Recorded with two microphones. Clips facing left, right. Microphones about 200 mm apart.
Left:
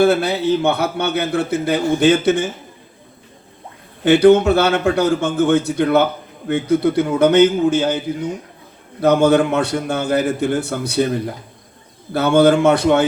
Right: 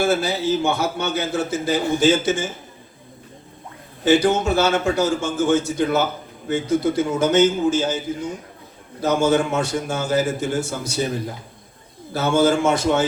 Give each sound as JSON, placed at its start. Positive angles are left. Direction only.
{"t": 0.0, "sound": "a man's voice", "side_deg": 60}
{"t": 4.0, "sound": "a man's voice", "side_deg": 60}
{"t": 12.1, "sound": "a man's voice", "side_deg": 60}